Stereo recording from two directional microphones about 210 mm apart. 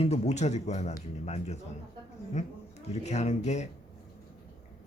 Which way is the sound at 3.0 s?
30° left (ahead or behind).